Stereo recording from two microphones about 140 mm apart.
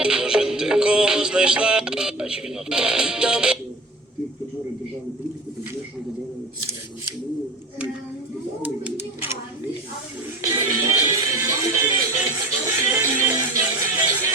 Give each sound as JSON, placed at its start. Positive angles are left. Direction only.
{"t": 0.0, "sound": "music", "side_deg": -5}
{"t": 10.4, "sound": "music", "side_deg": -25}
{"t": 14.1, "sound": "a sound", "side_deg": -25}